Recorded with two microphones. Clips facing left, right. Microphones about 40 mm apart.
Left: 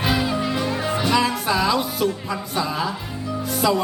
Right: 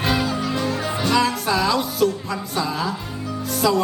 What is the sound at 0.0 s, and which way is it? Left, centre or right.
Music, centre.